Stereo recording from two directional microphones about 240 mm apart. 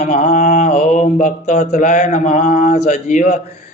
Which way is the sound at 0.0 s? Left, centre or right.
Left.